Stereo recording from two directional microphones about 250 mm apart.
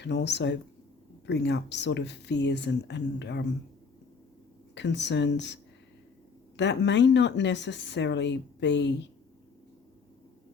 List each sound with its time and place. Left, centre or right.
0.0 s speech: left
4.7 s speech: left
6.6 s speech: left